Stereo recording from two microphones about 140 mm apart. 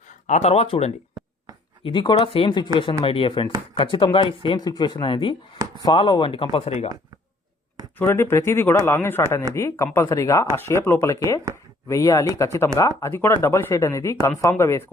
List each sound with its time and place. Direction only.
0.3 s speech: 55° left (ahead or behind)
1.8 s speech: 35° left (ahead or behind)
7.9 s speech: 15° left (ahead or behind)